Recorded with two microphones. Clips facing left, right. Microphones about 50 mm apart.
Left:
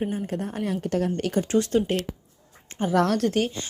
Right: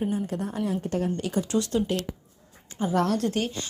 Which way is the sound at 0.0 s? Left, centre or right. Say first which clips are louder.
Even; left.